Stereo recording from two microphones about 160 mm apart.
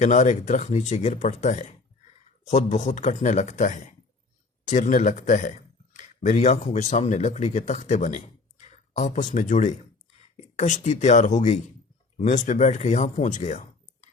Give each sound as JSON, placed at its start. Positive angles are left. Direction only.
{"t": 0.0, "sound": "speech", "side_deg": 45}